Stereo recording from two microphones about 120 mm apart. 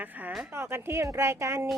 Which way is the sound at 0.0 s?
15° right (ahead or behind).